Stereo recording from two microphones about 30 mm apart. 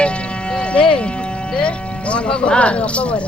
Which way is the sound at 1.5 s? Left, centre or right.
Left.